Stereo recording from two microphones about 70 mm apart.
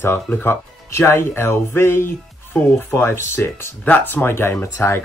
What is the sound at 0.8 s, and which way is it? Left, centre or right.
Speech, left.